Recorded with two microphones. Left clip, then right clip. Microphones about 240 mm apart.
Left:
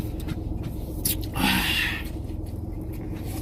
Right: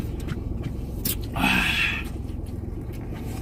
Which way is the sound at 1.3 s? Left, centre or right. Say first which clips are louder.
Right 2 dB; centre.